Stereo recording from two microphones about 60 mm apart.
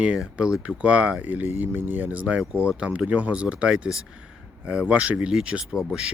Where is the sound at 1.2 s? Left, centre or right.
Right.